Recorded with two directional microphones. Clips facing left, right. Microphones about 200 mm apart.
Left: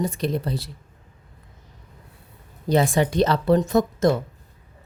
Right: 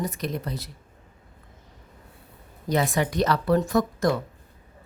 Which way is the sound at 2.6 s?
30° left (ahead or behind).